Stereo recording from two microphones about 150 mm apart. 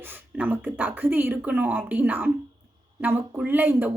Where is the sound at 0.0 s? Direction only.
15° right (ahead or behind).